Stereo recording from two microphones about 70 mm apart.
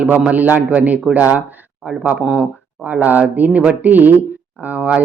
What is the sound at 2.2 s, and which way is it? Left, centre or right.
Speech, centre.